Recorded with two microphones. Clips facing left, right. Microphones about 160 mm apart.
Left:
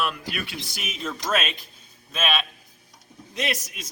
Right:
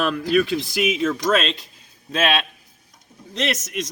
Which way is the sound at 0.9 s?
80° right.